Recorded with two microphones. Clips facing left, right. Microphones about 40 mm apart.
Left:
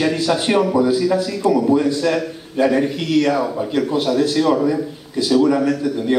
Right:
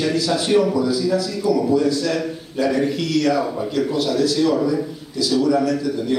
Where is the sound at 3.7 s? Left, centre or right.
Left.